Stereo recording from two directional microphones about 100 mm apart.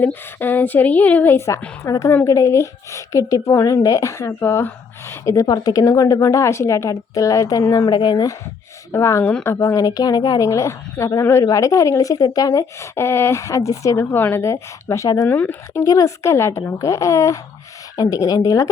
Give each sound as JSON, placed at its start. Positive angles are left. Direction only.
{"t": 0.0, "sound": "a woman's voice", "side_deg": 20}
{"t": 8.9, "sound": "a woman's voice", "side_deg": 30}
{"t": 15.3, "sound": "a woman's voice", "side_deg": 20}
{"t": 15.8, "sound": "a woman's voice", "side_deg": 35}